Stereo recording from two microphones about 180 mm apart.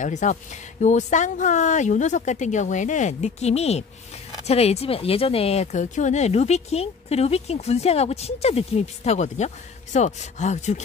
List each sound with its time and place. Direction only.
0.0 s speech: 40° left (ahead or behind)